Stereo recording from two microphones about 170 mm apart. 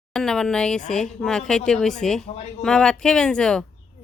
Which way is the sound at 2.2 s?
40° left (ahead or behind).